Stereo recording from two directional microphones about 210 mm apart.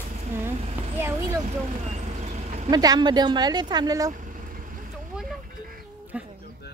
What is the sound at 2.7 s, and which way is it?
Speech, 20° right (ahead or behind).